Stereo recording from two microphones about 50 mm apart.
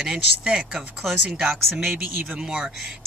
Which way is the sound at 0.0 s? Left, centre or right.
Centre.